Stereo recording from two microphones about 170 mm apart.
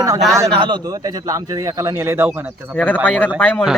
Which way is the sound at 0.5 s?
30° right (ahead or behind).